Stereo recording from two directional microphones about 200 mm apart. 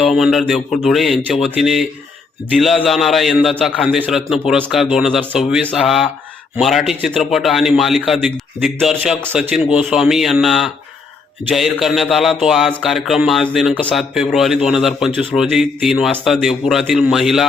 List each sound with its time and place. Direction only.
0.2 s a man's voice: centre (ahead or behind)